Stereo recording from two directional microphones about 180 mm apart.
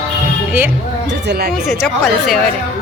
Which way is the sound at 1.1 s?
65° right (ahead or behind).